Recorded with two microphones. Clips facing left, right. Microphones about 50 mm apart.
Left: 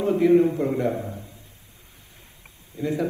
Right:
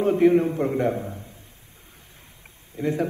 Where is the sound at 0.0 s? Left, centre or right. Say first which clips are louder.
Even; right.